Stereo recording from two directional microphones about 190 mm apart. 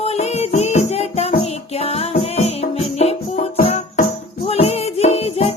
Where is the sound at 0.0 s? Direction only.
35° left (ahead or behind).